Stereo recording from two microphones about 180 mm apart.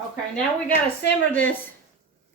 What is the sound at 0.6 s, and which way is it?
Speech, 80° left.